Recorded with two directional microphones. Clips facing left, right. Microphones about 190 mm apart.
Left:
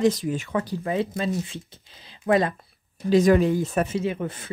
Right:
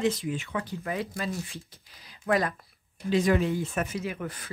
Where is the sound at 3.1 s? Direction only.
40° left (ahead or behind); by 4.5 s 25° left (ahead or behind).